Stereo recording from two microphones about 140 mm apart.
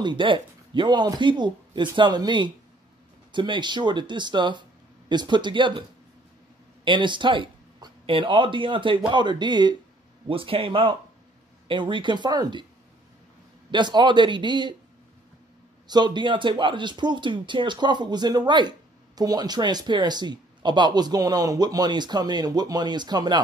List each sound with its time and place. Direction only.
0.0 s speech: 35° right (ahead or behind)
13.7 s speech: 35° right (ahead or behind)
15.9 s speech: 30° right (ahead or behind)